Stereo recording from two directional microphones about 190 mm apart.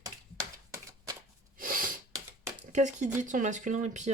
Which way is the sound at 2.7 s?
40° right (ahead or behind).